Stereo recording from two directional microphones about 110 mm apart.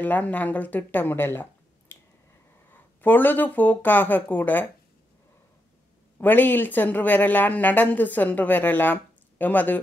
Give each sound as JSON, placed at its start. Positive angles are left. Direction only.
{"t": 0.0, "sound": "speech", "side_deg": 15}
{"t": 6.1, "sound": "speech", "side_deg": 15}